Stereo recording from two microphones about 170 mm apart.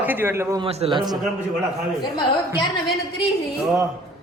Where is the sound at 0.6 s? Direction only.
30° right (ahead or behind).